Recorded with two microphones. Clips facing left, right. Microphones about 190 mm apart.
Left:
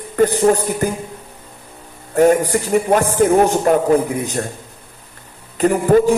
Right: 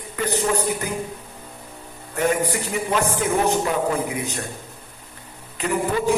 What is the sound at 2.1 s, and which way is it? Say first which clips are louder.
Speech: left 9 dB; 45° left (ahead or behind).